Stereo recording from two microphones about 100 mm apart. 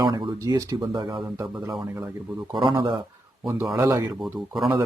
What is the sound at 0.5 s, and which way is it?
Speech, 35° right (ahead or behind).